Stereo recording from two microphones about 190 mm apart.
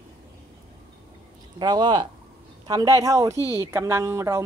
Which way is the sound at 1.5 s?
25° right (ahead or behind).